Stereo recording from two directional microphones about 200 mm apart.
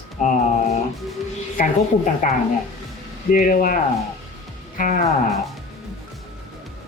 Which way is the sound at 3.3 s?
40° left (ahead or behind).